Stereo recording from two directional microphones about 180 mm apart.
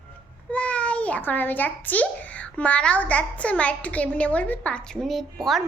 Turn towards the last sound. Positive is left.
turn(degrees=0)  # may be behind; listen again after turning